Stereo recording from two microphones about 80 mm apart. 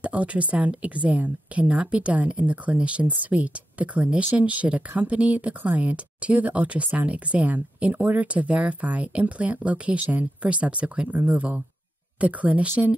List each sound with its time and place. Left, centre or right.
0.0 s speech: centre